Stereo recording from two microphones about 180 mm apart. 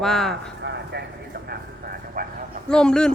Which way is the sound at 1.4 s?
55° right (ahead or behind).